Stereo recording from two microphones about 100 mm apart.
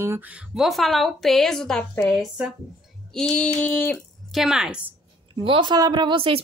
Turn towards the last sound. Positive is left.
turn(degrees=-60)  # may be behind; listen again after turning